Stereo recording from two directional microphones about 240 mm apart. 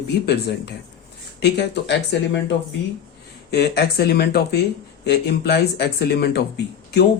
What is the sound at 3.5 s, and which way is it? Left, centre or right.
Speech, left.